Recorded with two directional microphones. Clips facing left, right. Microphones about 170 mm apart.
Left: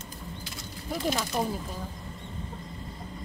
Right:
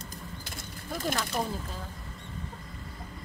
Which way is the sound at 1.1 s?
15° left (ahead or behind).